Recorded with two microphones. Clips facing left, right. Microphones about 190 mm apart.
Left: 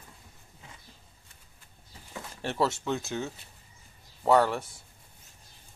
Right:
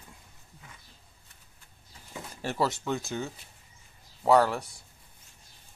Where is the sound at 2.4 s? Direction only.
Centre (ahead or behind).